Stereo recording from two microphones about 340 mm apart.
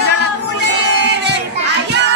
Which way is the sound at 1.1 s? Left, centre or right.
Right.